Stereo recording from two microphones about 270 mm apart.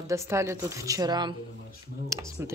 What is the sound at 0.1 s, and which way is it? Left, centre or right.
Speech, centre.